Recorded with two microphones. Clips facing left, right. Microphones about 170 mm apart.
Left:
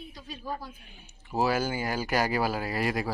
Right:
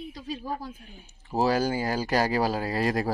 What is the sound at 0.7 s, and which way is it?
Speech, 40° right (ahead or behind).